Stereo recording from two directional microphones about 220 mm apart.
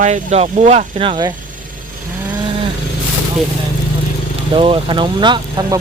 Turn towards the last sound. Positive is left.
turn(degrees=-20)  # may be behind; listen again after turning